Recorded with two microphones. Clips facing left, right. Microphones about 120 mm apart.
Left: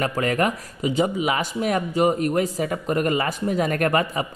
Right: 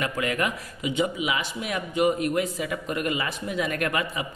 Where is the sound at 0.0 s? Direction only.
40° left (ahead or behind).